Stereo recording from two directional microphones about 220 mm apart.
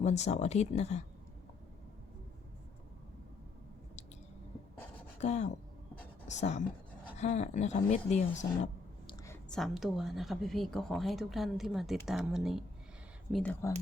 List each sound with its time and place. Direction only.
0.0 s speech: 30° left (ahead or behind)
5.2 s speech: 30° left (ahead or behind)
9.0 s speech: 10° left (ahead or behind)